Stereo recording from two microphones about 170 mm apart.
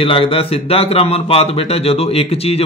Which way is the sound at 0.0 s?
30° left (ahead or behind).